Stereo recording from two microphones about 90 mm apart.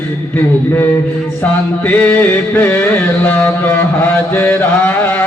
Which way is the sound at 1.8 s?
20° left (ahead or behind).